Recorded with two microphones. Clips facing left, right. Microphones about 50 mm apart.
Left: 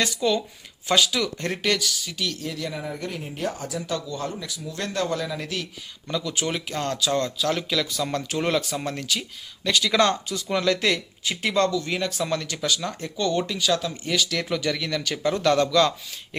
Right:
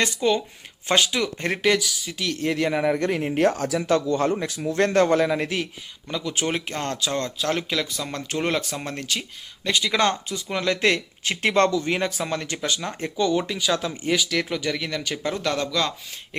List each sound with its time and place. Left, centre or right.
0.0 s speech: right
1.4 s speech: centre
2.4 s speech: right
4.0 s speech: right
5.4 s speech: right
6.1 s speech: centre
6.3 s speech: right
9.6 s speech: right
10.8 s speech: right
11.7 s speech: right
13.1 s speech: centre
13.7 s speech: right
14.2 s speech: centre